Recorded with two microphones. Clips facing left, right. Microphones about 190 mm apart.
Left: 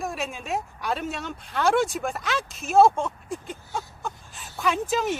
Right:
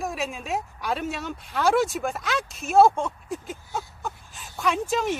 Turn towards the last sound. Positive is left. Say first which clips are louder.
# even
turn(degrees=0)  # may be behind; listen again after turning